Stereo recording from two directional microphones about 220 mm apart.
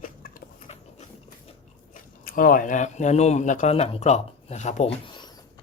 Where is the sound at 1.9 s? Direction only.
40° left (ahead or behind).